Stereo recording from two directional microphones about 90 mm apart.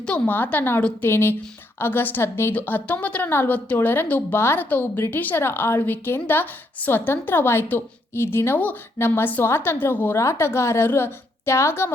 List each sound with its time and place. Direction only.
0.0 s a woman's voice: 15° left (ahead or behind)